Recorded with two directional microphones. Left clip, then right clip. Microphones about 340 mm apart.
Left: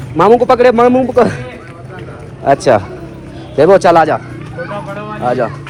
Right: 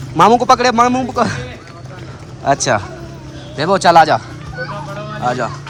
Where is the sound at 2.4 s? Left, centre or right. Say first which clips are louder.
Left 5 dB; centre.